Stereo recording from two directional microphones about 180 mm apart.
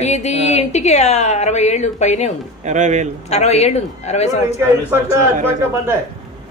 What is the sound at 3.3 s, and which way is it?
A woman's voice, 35° left (ahead or behind).